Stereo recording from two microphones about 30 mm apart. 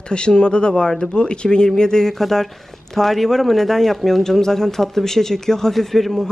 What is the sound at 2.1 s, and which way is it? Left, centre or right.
Speech, centre.